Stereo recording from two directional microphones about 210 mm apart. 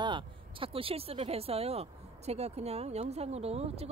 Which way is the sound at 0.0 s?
25° right (ahead or behind).